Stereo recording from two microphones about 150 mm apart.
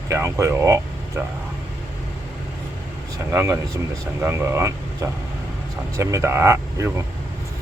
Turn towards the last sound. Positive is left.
turn(degrees=-20)  # may be behind; listen again after turning